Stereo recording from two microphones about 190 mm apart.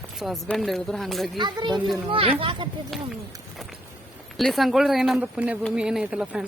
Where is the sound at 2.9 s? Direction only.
Centre (ahead or behind).